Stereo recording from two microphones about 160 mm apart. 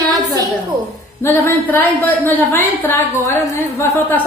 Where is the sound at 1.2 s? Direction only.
15° left (ahead or behind).